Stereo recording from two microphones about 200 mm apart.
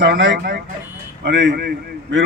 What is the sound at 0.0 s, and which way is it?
A man's voice, 65° right (ahead or behind).